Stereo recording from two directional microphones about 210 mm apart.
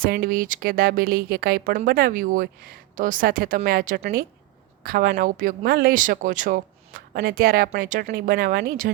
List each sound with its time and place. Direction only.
0.0 s speech: 45° right (ahead or behind)